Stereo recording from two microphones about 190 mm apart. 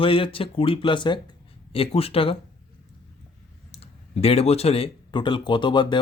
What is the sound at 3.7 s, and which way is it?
Speech, 30° left (ahead or behind).